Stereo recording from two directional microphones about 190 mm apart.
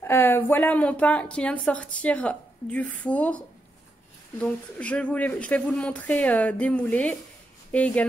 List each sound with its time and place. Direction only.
0.0 s a woman's voice: 10° left (ahead or behind)